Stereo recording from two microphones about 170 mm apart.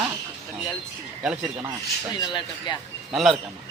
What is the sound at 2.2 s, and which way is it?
Speech, 25° left (ahead or behind).